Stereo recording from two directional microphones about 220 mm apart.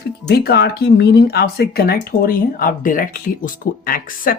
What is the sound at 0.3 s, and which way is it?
A man's voice, 45° left (ahead or behind).